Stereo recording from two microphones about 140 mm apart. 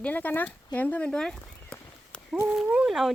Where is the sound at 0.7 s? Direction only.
10° left (ahead or behind).